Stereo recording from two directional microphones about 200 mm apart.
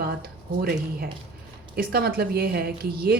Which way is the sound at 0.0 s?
50° right (ahead or behind).